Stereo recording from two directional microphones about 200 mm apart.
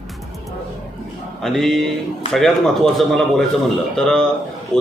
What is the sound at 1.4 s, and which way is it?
Speech, centre (ahead or behind).